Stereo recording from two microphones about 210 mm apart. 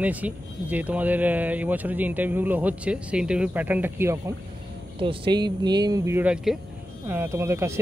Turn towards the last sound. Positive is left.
turn(degrees=-15)  # may be behind; listen again after turning